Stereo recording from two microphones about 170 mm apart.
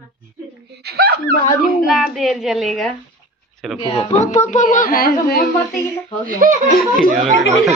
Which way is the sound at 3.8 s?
30° left (ahead or behind).